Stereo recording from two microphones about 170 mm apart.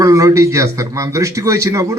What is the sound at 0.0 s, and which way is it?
A man's voice, 20° right (ahead or behind).